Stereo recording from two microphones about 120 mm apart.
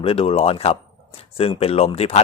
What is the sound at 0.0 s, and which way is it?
Speech, 55° left (ahead or behind).